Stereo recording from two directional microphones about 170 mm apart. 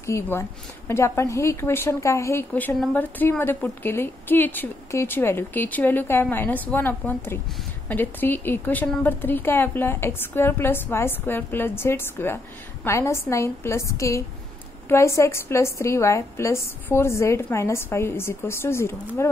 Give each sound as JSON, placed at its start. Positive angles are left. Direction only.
{"t": 0.0, "sound": "a woman's voice", "side_deg": 15}